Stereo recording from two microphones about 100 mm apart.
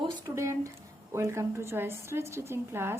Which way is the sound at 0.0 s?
45° right (ahead or behind).